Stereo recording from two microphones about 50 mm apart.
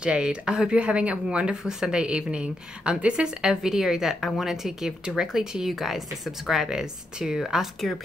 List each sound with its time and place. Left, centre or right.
0.0 s a woman's voice: right
7.8 s a woman's voice: centre